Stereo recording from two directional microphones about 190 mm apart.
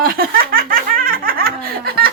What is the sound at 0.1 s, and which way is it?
Laughter, 50° right (ahead or behind).